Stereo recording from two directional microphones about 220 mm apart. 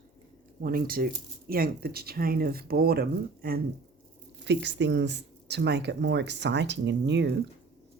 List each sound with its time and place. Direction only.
0.6 s speech: 40° right (ahead or behind)